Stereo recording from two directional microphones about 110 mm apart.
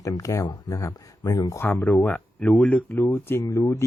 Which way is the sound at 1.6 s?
15° left (ahead or behind).